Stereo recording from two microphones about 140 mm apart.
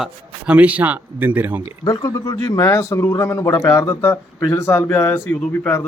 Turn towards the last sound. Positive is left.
turn(degrees=15)  # may be behind; listen again after turning